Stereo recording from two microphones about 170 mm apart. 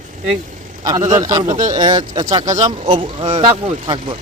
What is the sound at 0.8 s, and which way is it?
A man's voice, 20° right (ahead or behind).